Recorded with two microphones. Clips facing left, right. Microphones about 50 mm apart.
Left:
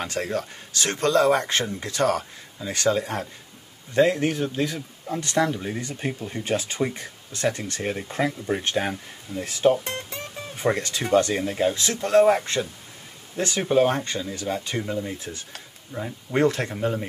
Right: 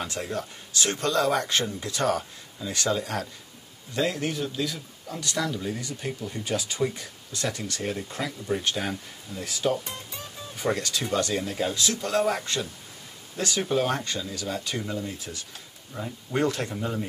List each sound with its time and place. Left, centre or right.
0.2 s speech: left
2.6 s speech: left
13.4 s speech: left
15.9 s speech: centre
16.3 s speech: left
16.7 s speech: centre